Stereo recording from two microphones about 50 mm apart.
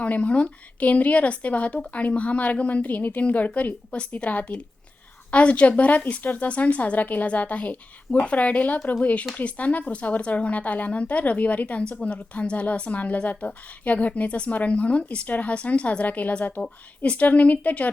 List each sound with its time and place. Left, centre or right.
0.0 s a woman's voice: left